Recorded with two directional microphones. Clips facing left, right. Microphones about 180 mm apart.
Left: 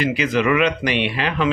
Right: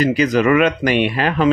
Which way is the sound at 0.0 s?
40° right (ahead or behind).